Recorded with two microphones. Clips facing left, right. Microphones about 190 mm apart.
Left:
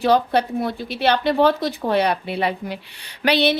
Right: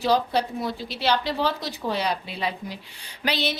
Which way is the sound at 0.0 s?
60° left (ahead or behind).